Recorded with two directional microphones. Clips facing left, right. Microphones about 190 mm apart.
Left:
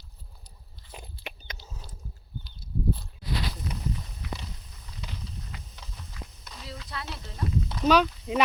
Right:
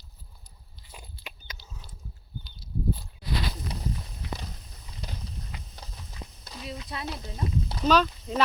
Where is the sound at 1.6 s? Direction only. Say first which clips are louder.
Left 3 dB; 45° left (ahead or behind).